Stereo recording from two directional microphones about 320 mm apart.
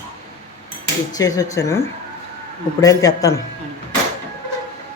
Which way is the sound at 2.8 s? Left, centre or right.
Centre.